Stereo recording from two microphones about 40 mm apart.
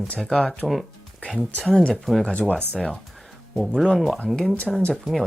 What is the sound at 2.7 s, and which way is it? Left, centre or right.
Speech, centre.